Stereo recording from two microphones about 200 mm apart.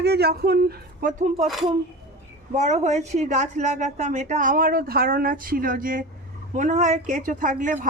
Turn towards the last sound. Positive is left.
turn(degrees=-40)  # may be behind; listen again after turning